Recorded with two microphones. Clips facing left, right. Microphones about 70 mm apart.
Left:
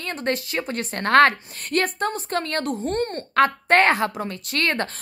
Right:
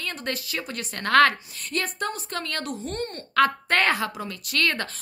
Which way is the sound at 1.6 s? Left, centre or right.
Left.